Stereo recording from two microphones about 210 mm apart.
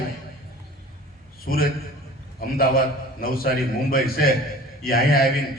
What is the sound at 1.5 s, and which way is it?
A man's voice, 45° left (ahead or behind).